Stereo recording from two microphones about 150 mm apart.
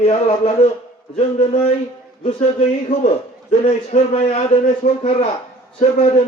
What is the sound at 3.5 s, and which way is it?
Speech, 45° left (ahead or behind).